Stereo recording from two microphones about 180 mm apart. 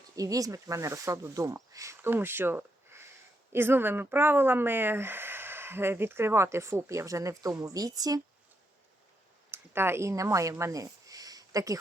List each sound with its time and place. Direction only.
0.2 s a woman's voice: 20° right (ahead or behind)
9.5 s speech: 15° right (ahead or behind)